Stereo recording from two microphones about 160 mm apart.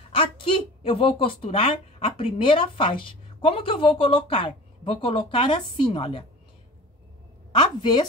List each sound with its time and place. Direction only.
0.1 s a woman's voice: 35° left (ahead or behind)
7.5 s a woman's voice: 30° left (ahead or behind)